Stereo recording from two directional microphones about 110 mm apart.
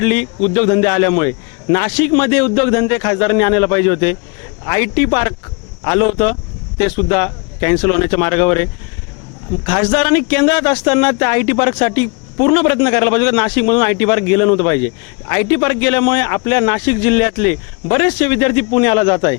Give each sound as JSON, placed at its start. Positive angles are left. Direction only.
{"t": 0.0, "sound": "speech", "side_deg": 20}